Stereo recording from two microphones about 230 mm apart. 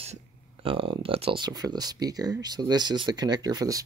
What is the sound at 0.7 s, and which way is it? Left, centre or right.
Speech, right.